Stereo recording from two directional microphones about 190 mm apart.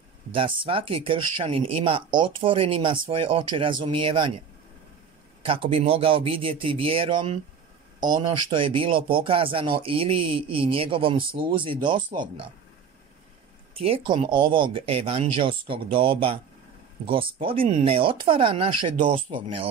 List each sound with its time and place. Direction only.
0.3 s speech: 30° right (ahead or behind)
5.4 s speech: 30° right (ahead or behind)
13.7 s speech: 30° right (ahead or behind)